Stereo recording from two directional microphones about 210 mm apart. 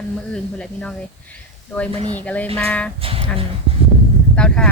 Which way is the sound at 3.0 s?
25° right (ahead or behind).